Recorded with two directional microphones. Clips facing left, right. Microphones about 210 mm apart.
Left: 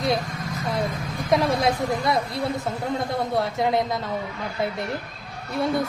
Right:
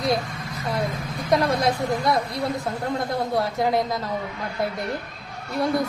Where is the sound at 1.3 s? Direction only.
Centre (ahead or behind).